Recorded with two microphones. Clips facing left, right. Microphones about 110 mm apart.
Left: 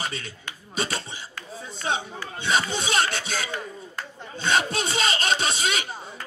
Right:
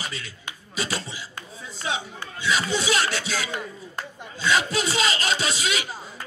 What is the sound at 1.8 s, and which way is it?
Speech, 40° left (ahead or behind).